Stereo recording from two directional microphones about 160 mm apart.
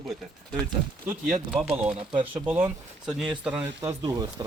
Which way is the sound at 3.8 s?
20° right (ahead or behind).